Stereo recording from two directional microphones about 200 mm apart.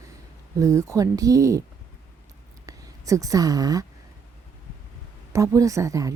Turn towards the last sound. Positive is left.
turn(degrees=-15)  # may be behind; listen again after turning